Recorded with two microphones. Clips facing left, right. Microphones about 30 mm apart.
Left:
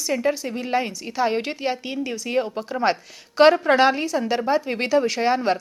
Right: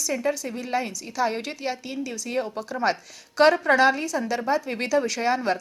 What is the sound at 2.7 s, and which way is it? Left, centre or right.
Speech, left.